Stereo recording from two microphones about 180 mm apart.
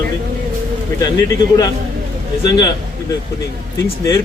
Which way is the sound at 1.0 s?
20° left (ahead or behind).